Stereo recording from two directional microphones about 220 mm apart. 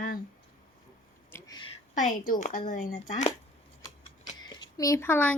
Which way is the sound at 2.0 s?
35° left (ahead or behind).